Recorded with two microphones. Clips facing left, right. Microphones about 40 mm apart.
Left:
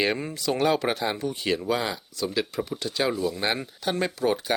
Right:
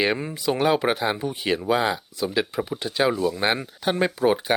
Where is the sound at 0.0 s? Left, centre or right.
Centre.